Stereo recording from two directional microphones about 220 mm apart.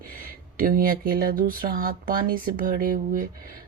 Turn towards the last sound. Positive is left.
turn(degrees=-40)  # may be behind; listen again after turning